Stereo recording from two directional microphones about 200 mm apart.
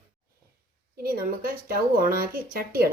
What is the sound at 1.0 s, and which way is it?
Speech, 50° right (ahead or behind).